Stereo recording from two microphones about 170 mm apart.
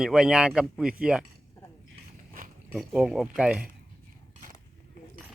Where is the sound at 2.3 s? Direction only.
55° right (ahead or behind).